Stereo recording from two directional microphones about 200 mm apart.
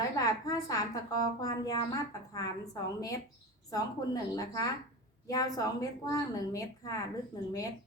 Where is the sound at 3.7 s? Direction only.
20° left (ahead or behind).